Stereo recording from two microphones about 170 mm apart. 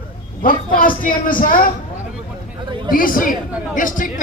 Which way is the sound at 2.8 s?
55° left (ahead or behind).